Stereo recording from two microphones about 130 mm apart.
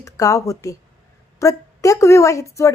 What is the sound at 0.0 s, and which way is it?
A woman's voice, 25° left (ahead or behind).